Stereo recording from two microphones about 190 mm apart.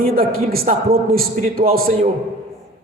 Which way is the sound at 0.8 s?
35° right (ahead or behind).